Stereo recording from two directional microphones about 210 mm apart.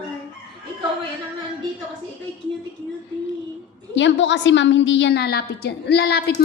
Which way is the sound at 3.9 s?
60° left (ahead or behind).